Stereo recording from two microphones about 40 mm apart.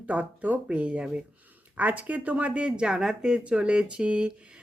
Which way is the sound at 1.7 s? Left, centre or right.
Right.